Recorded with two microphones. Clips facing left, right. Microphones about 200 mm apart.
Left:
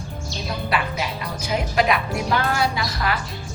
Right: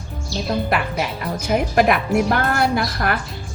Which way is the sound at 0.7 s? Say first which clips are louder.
Right 3 dB; 55° right (ahead or behind).